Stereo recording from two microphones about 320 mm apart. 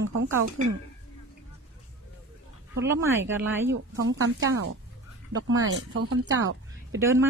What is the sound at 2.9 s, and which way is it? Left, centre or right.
Speech, centre.